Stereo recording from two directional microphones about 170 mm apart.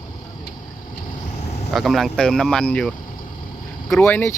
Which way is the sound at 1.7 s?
Centre (ahead or behind).